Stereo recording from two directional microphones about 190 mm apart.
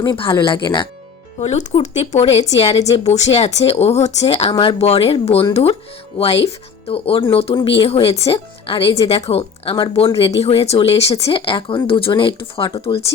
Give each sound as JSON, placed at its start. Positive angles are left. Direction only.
{"t": 0.0, "sound": "speech", "side_deg": 25}